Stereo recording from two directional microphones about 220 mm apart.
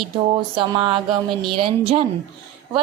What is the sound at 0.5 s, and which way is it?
Speech, 20° right (ahead or behind).